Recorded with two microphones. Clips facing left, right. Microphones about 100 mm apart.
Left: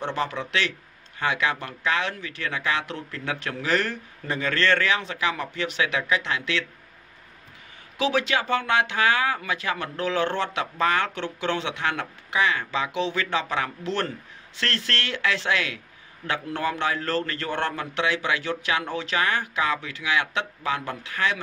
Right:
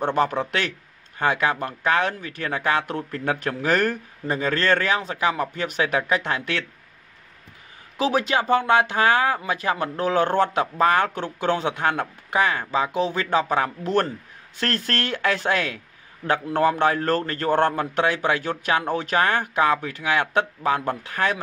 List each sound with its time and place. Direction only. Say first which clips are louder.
0.0 s speech: right 6 dB; 50° right (ahead or behind)
8.0 s speech: right 2 dB; 40° right (ahead or behind)